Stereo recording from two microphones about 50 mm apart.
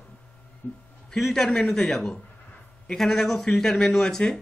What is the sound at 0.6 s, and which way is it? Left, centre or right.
Speech, left.